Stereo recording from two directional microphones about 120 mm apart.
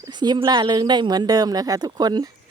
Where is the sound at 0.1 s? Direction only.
35° right (ahead or behind).